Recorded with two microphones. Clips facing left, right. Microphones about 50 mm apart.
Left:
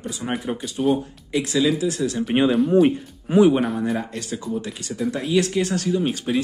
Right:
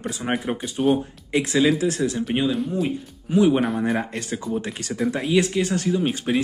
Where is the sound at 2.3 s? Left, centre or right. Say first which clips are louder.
Left 7 dB; centre.